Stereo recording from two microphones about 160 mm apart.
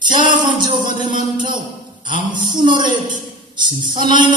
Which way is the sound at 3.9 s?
30° right (ahead or behind).